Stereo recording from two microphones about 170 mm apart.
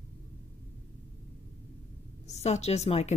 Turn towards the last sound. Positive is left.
turn(degrees=40)  # may be behind; listen again after turning